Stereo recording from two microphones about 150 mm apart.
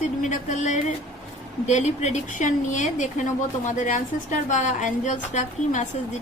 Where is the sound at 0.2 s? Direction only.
55° left (ahead or behind).